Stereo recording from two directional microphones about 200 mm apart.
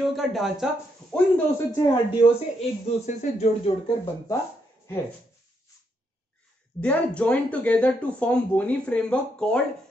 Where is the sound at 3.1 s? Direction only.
35° left (ahead or behind).